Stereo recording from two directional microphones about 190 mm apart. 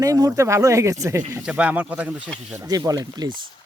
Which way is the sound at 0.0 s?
20° right (ahead or behind).